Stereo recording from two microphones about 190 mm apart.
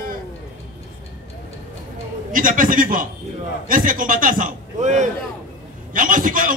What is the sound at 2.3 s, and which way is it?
A man's voice, 45° right (ahead or behind).